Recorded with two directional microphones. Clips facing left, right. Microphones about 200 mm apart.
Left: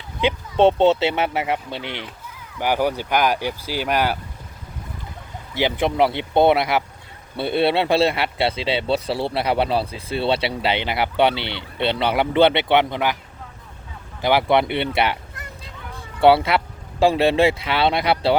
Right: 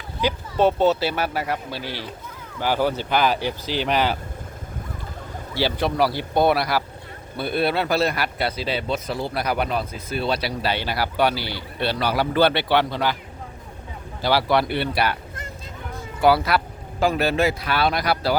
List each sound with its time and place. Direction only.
0.2 s speech: 25° left (ahead or behind)
5.5 s speech: 20° left (ahead or behind)
14.2 s speech: 20° left (ahead or behind)